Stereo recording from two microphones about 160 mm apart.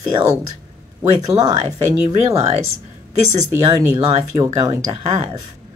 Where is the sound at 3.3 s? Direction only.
20° right (ahead or behind).